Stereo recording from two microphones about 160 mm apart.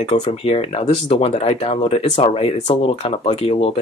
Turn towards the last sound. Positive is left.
turn(degrees=35)  # may be behind; listen again after turning